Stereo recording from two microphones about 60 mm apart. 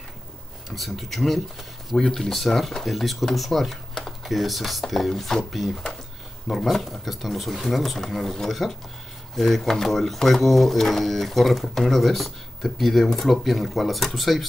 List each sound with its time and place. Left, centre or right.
0.7 s speech: centre